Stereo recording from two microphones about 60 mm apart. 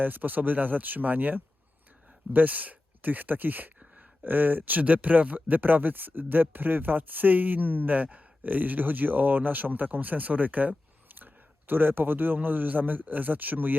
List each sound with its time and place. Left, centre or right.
0.0 s speech: right